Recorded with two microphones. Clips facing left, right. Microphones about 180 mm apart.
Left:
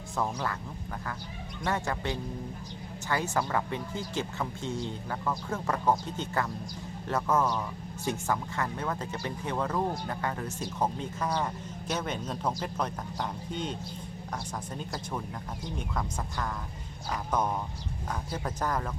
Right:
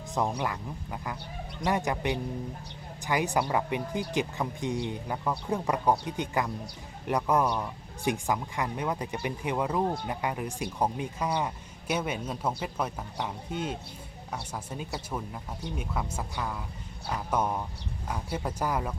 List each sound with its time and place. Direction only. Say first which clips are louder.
0.2 s speech: right 2 dB; 20° right (ahead or behind)
1.6 s speech: right 3 dB; 15° right (ahead or behind)